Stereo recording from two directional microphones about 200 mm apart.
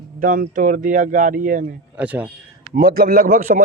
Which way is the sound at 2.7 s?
50° right (ahead or behind).